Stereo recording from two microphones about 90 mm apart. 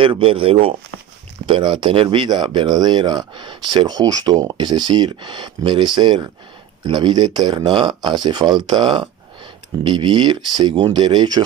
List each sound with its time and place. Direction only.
0.0 s speech: 80° right
1.4 s speech: 70° right (ahead or behind); by 11.4 s 55° right (ahead or behind)